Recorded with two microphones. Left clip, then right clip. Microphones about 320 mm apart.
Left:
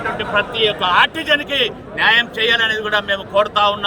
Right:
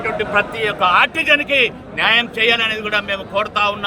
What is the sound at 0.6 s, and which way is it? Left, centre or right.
A man's voice, centre.